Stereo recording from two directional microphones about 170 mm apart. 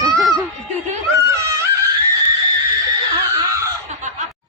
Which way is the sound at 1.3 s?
15° right (ahead or behind).